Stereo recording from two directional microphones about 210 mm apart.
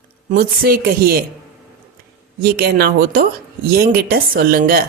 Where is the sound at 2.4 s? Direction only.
45° right (ahead or behind).